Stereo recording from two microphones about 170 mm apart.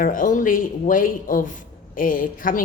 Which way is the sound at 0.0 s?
55° left (ahead or behind).